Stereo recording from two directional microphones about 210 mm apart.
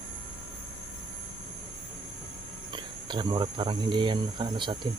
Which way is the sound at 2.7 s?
20° right (ahead or behind).